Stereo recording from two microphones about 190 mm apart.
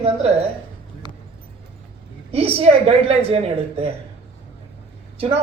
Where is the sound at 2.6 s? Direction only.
30° right (ahead or behind).